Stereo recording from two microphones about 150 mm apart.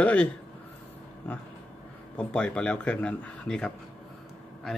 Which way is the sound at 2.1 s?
10° left (ahead or behind).